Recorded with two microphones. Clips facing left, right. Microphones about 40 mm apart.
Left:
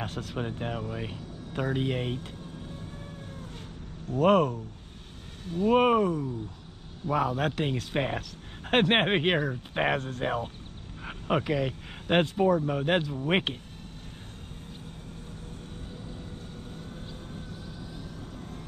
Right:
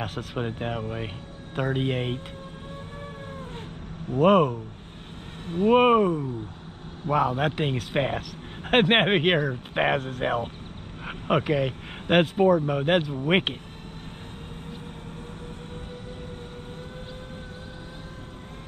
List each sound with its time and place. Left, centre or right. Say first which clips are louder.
0.0 s speech: right 3 dB; right
4.2 s speech: right 3 dB; centre
5.5 s speech: right 4 dB; right
5.8 s speech: right 4 dB; right